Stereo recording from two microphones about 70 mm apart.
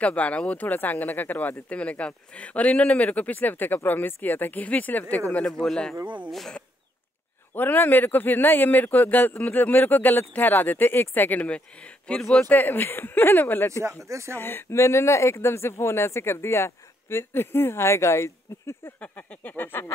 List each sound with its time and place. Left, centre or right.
0.0 s speech: centre
5.5 s speech: centre
7.5 s speech: left
12.2 s speech: centre
12.4 s speech: left
13.7 s speech: right
14.4 s speech: left
18.9 s speech: left